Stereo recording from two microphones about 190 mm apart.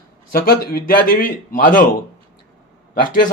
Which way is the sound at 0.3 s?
55° left (ahead or behind).